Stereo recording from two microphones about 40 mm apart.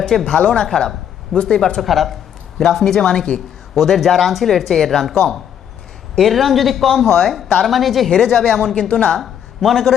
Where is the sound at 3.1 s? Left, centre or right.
Left.